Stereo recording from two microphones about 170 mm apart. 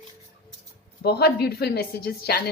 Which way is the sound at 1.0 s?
70° left (ahead or behind).